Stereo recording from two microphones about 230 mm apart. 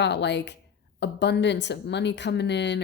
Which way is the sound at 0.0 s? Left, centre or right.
Left.